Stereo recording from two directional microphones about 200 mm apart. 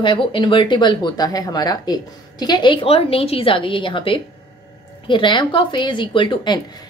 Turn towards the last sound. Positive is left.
turn(degrees=25)  # may be behind; listen again after turning